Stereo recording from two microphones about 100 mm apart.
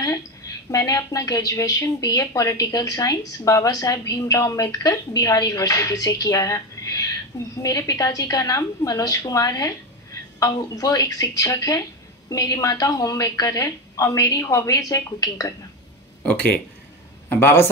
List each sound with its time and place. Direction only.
0.7 s speech: 35° left (ahead or behind)
16.2 s speech: 15° left (ahead or behind)